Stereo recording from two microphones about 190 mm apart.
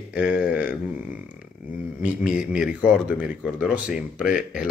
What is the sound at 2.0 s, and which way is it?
Speech, 5° right (ahead or behind).